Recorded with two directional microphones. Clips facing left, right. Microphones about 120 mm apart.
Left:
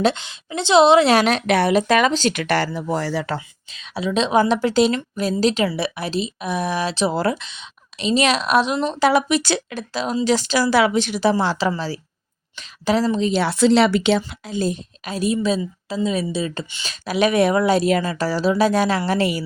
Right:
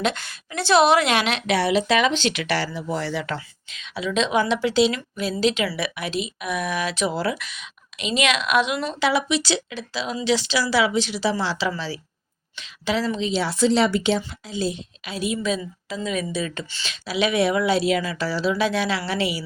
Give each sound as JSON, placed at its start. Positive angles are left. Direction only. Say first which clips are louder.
{"t": 0.0, "sound": "a woman's voice", "louder": "left 5 dB", "side_deg": 25}
{"t": 1.1, "sound": "a woman's voice", "louder": "left 5 dB", "side_deg": 40}
{"t": 7.3, "sound": "a woman's voice", "louder": "right 1 dB", "side_deg": 25}
{"t": 14.4, "sound": "a woman's voice", "louder": "left 3 dB", "side_deg": 50}
{"t": 16.8, "sound": "speech", "louder": "left 4 dB", "side_deg": 45}